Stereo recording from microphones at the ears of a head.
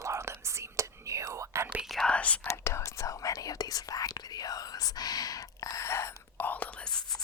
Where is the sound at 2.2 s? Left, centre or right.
Left.